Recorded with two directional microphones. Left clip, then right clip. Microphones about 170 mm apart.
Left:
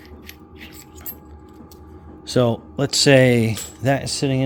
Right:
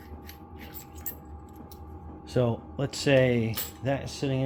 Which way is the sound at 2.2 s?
90° left.